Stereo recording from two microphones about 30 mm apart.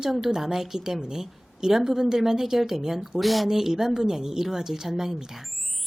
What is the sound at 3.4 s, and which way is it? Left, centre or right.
A woman's voice, centre.